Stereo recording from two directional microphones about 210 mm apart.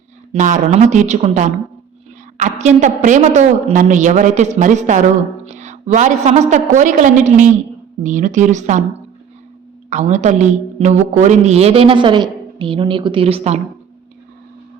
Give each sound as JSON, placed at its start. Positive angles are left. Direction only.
{"t": 0.3, "sound": "a woman's voice", "side_deg": -35}
{"t": 9.9, "sound": "a woman's voice", "side_deg": -35}